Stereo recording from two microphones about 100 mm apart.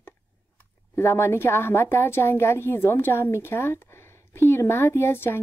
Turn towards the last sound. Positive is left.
turn(degrees=20)  # may be behind; listen again after turning